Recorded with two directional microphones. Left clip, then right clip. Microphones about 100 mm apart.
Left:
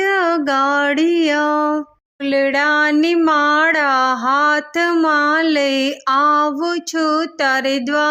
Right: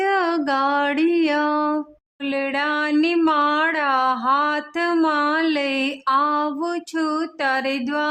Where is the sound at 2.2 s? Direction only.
45° left (ahead or behind).